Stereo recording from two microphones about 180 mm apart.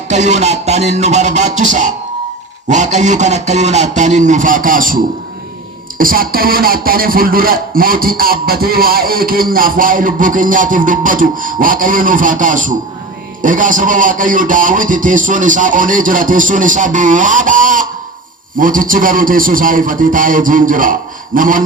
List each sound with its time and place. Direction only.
0.1 s speech: 40° right (ahead or behind)
6.0 s speech: 50° right (ahead or behind)